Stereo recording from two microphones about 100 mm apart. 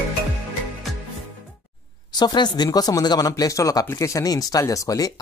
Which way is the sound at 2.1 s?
45° left (ahead or behind).